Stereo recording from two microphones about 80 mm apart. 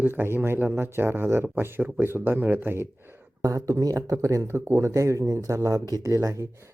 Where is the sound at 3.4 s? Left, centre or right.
Right.